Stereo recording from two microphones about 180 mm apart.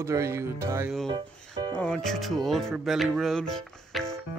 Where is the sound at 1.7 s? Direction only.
5° left (ahead or behind).